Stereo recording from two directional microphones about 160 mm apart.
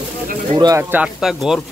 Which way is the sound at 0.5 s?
25° right (ahead or behind).